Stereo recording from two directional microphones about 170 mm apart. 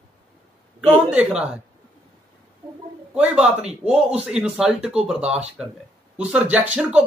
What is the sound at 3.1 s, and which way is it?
Speech, 5° right (ahead or behind).